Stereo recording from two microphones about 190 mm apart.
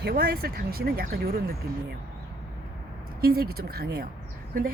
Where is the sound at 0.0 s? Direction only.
55° right (ahead or behind).